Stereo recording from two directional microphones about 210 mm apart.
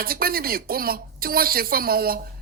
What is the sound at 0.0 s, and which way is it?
A woman's voice, 45° right (ahead or behind).